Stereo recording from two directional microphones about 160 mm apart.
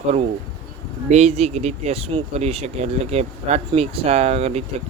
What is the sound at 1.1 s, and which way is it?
Speech, 40° right (ahead or behind).